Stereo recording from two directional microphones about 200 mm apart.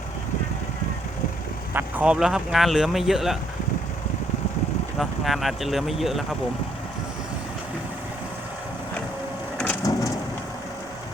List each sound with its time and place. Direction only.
1.7 s speech: 5° right (ahead or behind)
4.9 s speech: centre (ahead or behind)
9.9 s rain: 15° left (ahead or behind)